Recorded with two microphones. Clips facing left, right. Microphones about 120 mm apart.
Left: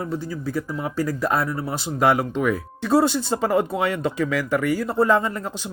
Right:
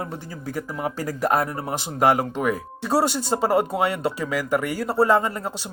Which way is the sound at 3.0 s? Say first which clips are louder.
Left 3 dB; 15° right (ahead or behind).